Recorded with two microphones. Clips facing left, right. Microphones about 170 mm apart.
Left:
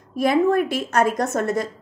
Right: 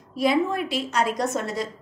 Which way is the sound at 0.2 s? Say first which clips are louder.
Left 4 dB; 50° left (ahead or behind).